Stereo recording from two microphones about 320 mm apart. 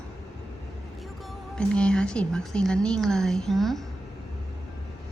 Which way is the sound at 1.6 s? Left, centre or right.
Centre.